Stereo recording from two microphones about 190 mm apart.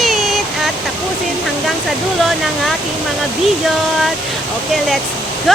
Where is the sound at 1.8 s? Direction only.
Centre (ahead or behind).